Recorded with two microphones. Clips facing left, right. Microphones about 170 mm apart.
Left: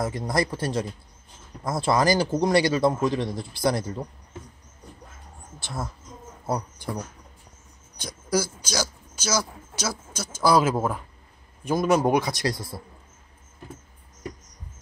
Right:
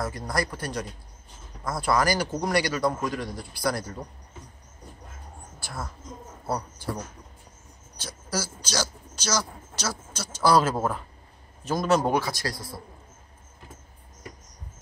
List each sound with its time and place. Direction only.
0.0 s a man's voice: 20° left (ahead or behind)
5.6 s speech: 25° left (ahead or behind)
8.0 s a man's voice: 15° left (ahead or behind)